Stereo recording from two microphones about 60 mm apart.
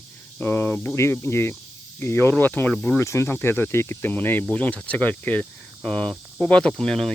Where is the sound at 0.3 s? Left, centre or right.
Left.